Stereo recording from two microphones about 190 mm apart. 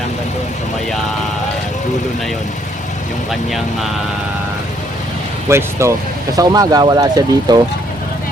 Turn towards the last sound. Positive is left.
turn(degrees=-20)  # may be behind; listen again after turning